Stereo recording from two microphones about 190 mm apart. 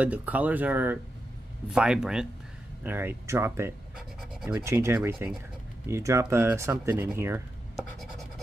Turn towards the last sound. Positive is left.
turn(degrees=-10)  # may be behind; listen again after turning